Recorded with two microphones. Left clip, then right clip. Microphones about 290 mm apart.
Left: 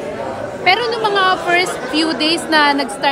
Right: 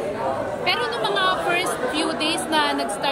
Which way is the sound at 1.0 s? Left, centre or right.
Left.